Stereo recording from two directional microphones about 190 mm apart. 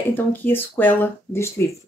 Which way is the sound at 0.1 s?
10° left (ahead or behind).